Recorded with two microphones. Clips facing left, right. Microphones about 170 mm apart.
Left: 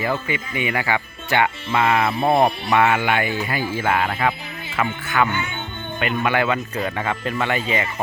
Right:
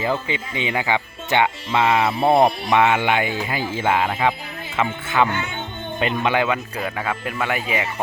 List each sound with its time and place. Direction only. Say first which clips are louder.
0.3 s speech: left 1 dB; 20° right (ahead or behind)
4.8 s speech: right 1 dB; 25° right (ahead or behind)
6.3 s speech: even; 15° right (ahead or behind)